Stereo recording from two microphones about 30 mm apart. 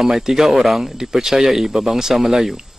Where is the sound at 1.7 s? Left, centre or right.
Centre.